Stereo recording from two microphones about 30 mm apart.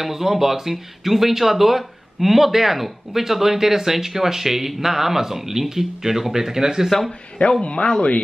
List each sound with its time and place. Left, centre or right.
0.0 s speech: centre
7.6 s speech: left